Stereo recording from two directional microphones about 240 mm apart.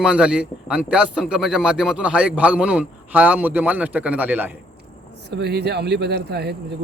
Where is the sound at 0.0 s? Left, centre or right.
Centre.